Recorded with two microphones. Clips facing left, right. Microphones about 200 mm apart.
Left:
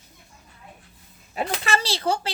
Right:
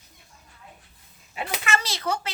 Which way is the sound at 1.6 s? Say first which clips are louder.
Left 2 dB; 30° left (ahead or behind).